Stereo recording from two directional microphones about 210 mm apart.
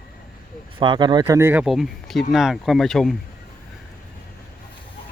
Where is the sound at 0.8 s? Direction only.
20° right (ahead or behind); by 3.2 s centre (ahead or behind).